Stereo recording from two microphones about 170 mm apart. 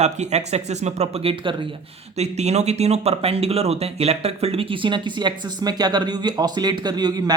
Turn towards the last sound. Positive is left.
turn(degrees=-25)  # may be behind; listen again after turning